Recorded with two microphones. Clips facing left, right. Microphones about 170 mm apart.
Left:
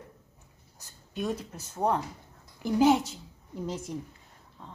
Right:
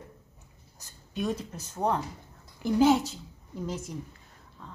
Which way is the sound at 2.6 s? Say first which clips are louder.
Even; 15° left (ahead or behind).